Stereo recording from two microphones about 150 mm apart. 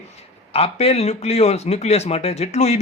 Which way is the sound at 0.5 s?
40° left (ahead or behind).